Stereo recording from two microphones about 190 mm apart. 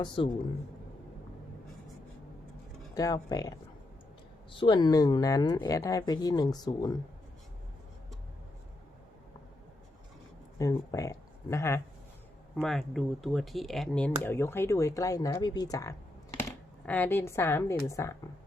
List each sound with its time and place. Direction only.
0.0 s speech: 25° left (ahead or behind)
2.9 s speech: 20° left (ahead or behind)
10.6 s speech: 15° left (ahead or behind)
12.5 s speech: centre (ahead or behind)